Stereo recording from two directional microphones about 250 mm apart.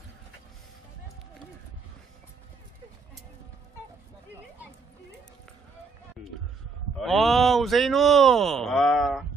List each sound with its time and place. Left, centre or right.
7.0 s speech: centre